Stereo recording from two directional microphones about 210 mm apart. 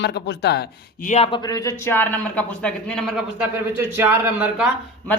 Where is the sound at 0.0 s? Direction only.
55° left (ahead or behind).